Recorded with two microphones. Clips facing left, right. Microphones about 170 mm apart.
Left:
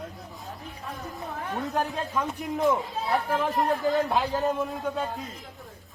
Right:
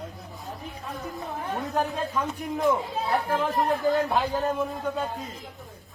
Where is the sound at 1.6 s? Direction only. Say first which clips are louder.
Right 1 dB; centre (ahead or behind).